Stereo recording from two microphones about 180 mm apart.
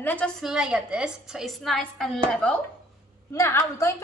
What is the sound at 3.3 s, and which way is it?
Speech, 15° left (ahead or behind).